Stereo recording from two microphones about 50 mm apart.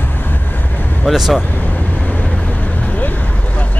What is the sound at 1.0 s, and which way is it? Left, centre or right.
Speech, centre.